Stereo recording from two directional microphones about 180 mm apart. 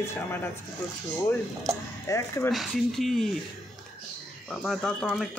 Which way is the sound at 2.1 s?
20° left (ahead or behind).